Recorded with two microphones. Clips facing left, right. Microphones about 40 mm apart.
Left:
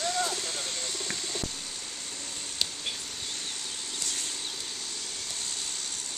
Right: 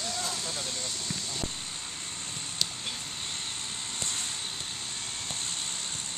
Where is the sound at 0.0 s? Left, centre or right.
Left.